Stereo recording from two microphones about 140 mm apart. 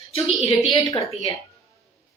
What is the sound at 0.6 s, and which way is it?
Speech, 30° left (ahead or behind).